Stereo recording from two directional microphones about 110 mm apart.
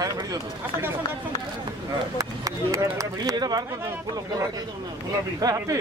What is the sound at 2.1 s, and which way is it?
Speech, 30° right (ahead or behind).